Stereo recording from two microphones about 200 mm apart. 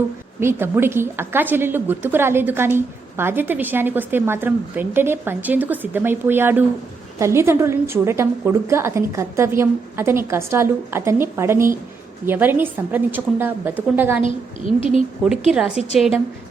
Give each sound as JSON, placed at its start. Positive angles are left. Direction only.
{"t": 0.3, "sound": "a woman's voice", "side_deg": -10}
{"t": 15.5, "sound": "a woman's voice", "side_deg": -5}